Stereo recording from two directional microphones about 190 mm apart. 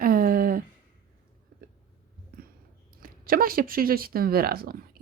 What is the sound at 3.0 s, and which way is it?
A woman's voice, 50° right (ahead or behind).